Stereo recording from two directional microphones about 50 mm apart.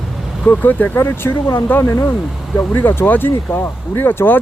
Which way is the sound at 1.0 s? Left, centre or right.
Left.